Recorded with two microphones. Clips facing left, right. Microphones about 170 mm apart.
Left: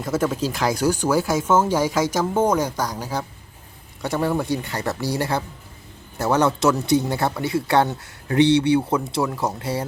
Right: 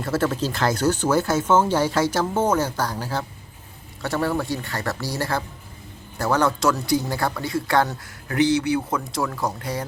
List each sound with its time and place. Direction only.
0.0 s speech: 10° left (ahead or behind); by 9.8 s 30° left (ahead or behind)